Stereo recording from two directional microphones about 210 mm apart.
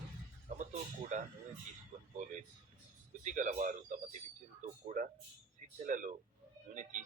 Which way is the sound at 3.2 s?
35° right (ahead or behind).